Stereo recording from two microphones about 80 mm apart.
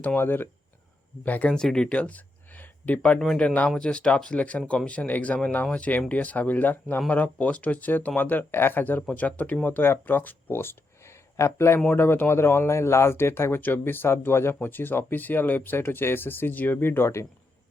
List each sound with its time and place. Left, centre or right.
0.2 s speech: left